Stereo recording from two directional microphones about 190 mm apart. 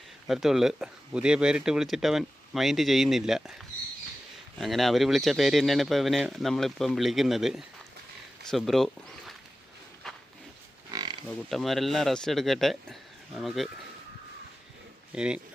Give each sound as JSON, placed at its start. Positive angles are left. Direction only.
{"t": 0.3, "sound": "speech", "side_deg": 0}
{"t": 4.5, "sound": "speech", "side_deg": 0}
{"t": 10.9, "sound": "pig", "side_deg": -25}
{"t": 11.4, "sound": "speech", "side_deg": 0}
{"t": 15.1, "sound": "speech", "side_deg": -5}